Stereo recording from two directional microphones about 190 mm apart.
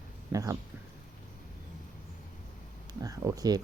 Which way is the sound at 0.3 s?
20° right (ahead or behind).